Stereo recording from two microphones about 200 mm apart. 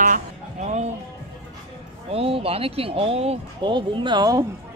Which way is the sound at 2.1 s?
30° right (ahead or behind).